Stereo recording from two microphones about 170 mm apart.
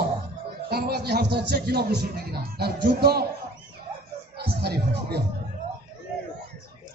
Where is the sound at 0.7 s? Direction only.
70° right (ahead or behind).